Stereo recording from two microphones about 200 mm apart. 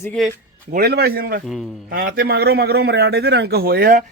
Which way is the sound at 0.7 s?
50° right (ahead or behind).